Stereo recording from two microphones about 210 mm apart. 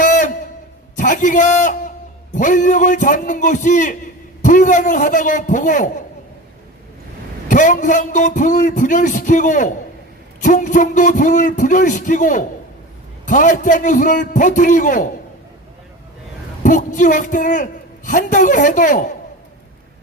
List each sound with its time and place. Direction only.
0.0 s a sound: 40° left (ahead or behind)
0.9 s a man's voice: 40° left (ahead or behind)
7.4 s a man's voice: 40° left (ahead or behind)
16.6 s a man's voice: 40° left (ahead or behind)